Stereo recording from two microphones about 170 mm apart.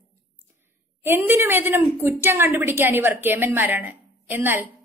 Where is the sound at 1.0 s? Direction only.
15° right (ahead or behind).